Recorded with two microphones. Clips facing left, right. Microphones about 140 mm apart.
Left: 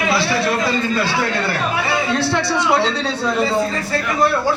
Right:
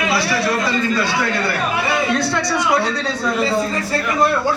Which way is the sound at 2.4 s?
25° left (ahead or behind).